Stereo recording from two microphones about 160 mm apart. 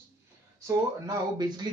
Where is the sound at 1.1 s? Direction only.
25° right (ahead or behind).